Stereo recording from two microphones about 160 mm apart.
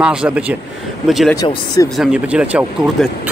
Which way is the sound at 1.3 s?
25° left (ahead or behind).